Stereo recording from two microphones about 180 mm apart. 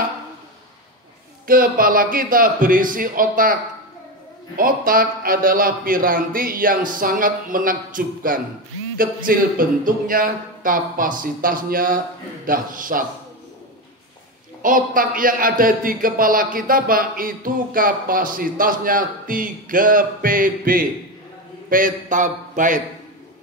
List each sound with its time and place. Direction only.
1.5 s speech: 50° right (ahead or behind)
4.6 s speech: 50° right (ahead or behind)
14.6 s speech: 50° right (ahead or behind)